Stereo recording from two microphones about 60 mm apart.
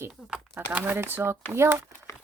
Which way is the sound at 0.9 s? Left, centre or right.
Right.